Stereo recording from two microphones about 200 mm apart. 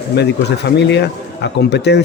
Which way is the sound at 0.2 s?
60° left (ahead or behind).